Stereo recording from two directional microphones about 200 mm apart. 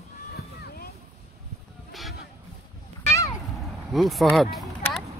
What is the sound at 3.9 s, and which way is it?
Speech, centre (ahead or behind).